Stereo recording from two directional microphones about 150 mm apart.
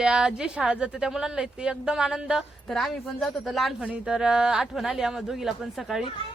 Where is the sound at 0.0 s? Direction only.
5° right (ahead or behind).